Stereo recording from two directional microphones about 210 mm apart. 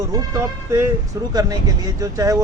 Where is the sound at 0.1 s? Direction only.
15° right (ahead or behind).